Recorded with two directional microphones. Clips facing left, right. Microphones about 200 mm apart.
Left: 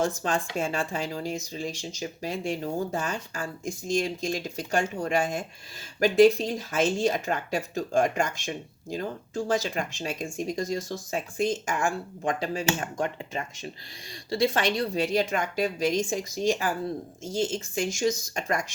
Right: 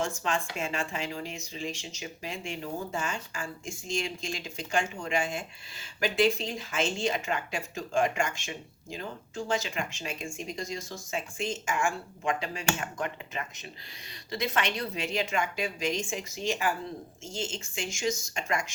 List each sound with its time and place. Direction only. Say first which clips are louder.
0.0 s speech: left 4 dB; 35° left (ahead or behind)
12.8 s speech: left 4 dB; 30° left (ahead or behind)